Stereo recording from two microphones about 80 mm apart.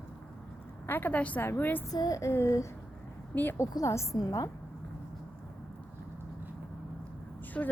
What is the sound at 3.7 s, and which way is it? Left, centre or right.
Speech, left.